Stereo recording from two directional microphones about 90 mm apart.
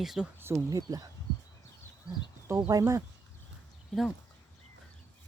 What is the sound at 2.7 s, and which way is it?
Speech, 40° right (ahead or behind).